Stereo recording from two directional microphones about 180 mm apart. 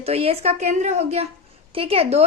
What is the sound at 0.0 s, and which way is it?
A woman's voice, 35° right (ahead or behind).